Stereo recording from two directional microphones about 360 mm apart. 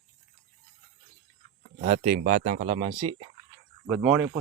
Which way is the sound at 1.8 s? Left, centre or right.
Right.